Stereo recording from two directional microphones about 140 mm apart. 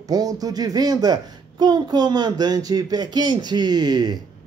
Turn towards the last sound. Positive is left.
turn(degrees=-30)  # may be behind; listen again after turning